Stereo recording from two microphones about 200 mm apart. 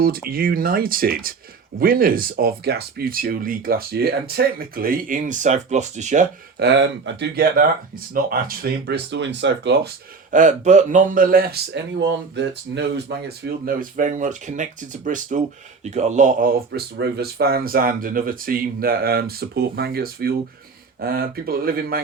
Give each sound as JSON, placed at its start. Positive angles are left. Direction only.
{"t": 0.0, "sound": "speech", "side_deg": -45}
{"t": 6.6, "sound": "speech", "side_deg": -60}
{"t": 10.3, "sound": "speech", "side_deg": -40}